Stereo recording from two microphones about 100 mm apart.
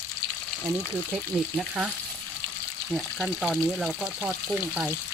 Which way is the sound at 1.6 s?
10° right (ahead or behind).